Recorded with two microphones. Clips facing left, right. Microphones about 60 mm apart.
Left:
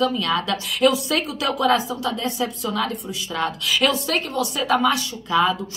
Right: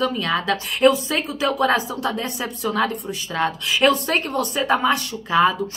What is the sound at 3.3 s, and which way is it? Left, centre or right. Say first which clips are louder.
A woman's voice: right 1 dB; right.